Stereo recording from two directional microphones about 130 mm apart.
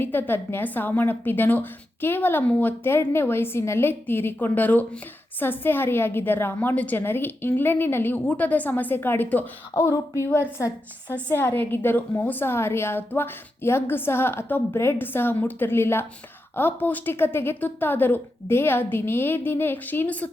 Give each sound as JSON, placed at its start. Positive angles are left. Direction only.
{"t": 0.0, "sound": "a woman's voice", "side_deg": 15}